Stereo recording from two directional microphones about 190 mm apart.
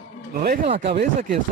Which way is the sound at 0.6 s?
35° right (ahead or behind).